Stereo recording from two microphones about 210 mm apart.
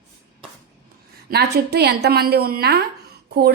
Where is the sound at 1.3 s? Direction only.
50° right (ahead or behind).